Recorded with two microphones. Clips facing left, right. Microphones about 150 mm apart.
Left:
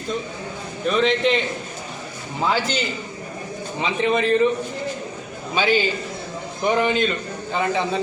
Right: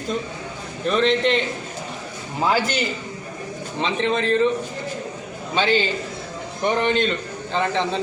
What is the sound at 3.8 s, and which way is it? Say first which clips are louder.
Speech: left 1 dB; 10° left (ahead or behind).